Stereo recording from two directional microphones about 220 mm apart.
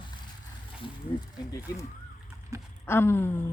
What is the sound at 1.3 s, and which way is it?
Speech, 15° left (ahead or behind).